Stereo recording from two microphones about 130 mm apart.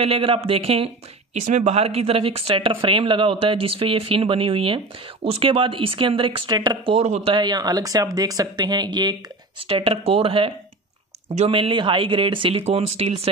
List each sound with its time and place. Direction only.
0.0 s speech: 45° right (ahead or behind)
1.4 s speech: 65° right (ahead or behind); by 9.1 s 30° right (ahead or behind)
9.6 s speech: 45° right (ahead or behind)